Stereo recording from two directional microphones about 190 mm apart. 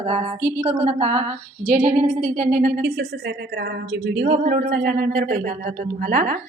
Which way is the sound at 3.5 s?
60° right (ahead or behind).